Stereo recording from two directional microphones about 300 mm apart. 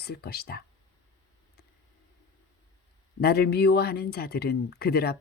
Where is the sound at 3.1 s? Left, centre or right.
Left.